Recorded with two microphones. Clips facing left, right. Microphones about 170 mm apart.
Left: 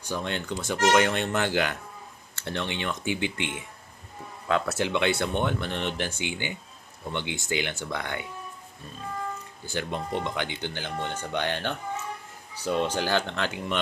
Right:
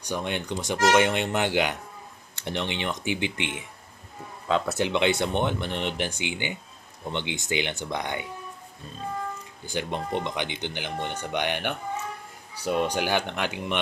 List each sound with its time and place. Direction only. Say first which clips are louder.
0.0 s speech: right 1 dB; 15° right (ahead or behind)
9.6 s speech: right 1 dB; 20° right (ahead or behind)